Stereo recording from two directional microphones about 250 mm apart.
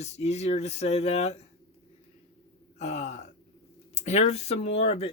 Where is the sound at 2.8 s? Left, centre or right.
Left.